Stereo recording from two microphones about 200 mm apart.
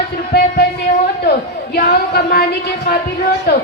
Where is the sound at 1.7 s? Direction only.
50° left (ahead or behind).